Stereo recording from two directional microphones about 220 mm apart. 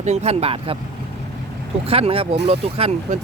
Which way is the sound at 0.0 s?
30° right (ahead or behind).